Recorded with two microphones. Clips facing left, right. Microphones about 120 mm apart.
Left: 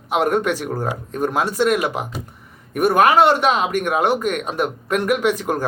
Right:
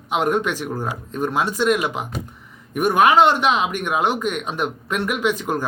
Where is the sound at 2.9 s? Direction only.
40° left (ahead or behind).